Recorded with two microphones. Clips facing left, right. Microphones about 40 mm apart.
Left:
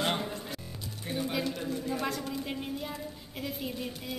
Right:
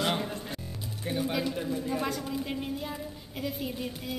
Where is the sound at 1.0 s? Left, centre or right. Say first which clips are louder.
Right 2 dB; centre.